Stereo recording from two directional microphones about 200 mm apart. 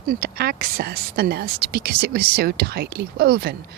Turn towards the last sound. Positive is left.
turn(degrees=-50)  # may be behind; listen again after turning